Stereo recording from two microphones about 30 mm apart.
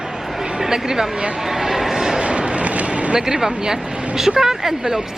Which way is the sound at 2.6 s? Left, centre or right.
Right.